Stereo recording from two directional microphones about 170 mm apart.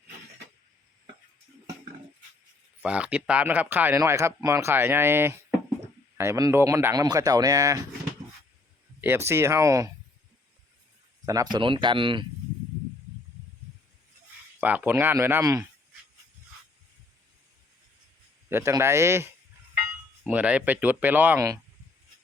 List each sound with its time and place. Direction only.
2.8 s speech: 5° right (ahead or behind)
9.0 s speech: 15° right (ahead or behind)
11.5 s speech: 30° right (ahead or behind)
14.6 s speech: 10° right (ahead or behind)
18.4 s speech: 15° right (ahead or behind)